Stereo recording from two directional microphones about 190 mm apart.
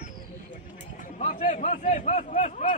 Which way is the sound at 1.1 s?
35° left (ahead or behind).